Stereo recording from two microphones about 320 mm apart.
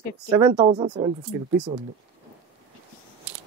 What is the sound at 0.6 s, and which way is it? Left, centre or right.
Speech, centre.